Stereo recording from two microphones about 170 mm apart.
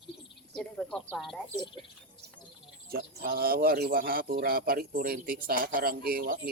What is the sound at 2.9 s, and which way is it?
Speech, 60° right (ahead or behind).